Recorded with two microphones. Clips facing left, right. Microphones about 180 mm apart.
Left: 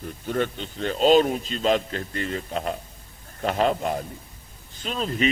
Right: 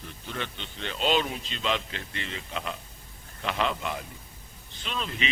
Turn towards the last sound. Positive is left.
turn(degrees=40)  # may be behind; listen again after turning